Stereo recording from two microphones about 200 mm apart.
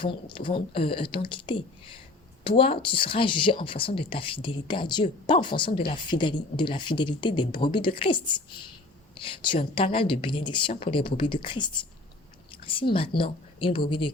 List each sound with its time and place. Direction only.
0.0 s speech: 25° left (ahead or behind)